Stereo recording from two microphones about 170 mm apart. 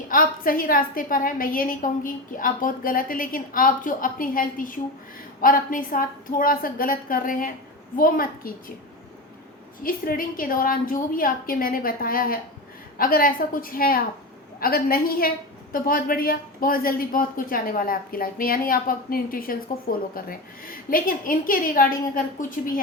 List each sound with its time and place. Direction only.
0.1 s a woman's voice: 55° left (ahead or behind)
9.8 s a woman's voice: 55° left (ahead or behind)